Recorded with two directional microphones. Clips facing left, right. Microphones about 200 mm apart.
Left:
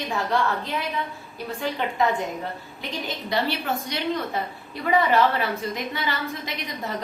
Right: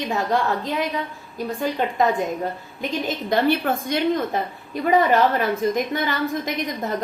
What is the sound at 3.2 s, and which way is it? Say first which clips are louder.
A woman's voice: right 6 dB; 50° right (ahead or behind).